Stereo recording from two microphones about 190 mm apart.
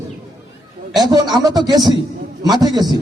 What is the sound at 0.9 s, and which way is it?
A man's voice, 20° right (ahead or behind).